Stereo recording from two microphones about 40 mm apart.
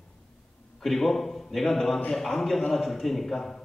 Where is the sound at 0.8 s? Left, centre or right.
Centre.